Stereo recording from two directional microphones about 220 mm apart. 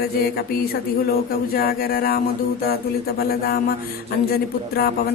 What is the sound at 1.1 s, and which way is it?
Speech, 45° left (ahead or behind).